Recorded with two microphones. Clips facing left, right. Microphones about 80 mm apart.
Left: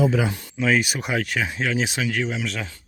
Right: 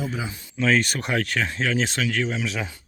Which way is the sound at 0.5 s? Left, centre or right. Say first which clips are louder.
Right 1 dB; centre.